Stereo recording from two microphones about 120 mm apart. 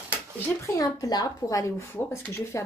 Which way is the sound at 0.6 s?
30° left (ahead or behind).